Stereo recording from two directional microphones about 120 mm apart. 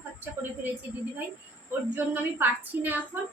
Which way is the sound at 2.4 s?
15° right (ahead or behind).